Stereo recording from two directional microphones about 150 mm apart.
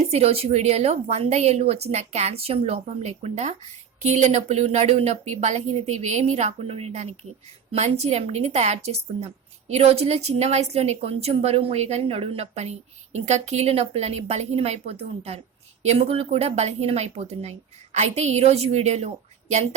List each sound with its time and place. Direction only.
0.1 s a woman's voice: 40° right (ahead or behind)